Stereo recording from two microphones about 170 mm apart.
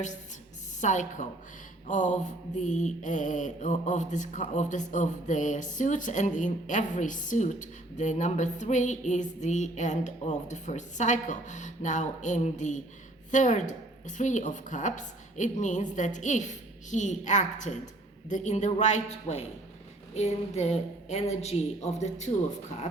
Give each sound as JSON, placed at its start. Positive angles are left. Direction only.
{"t": 0.8, "sound": "mantra", "side_deg": 45}
{"t": 20.1, "sound": "a woman's voice", "side_deg": 40}